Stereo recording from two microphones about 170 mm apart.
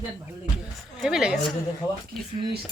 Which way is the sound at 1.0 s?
5° right (ahead or behind).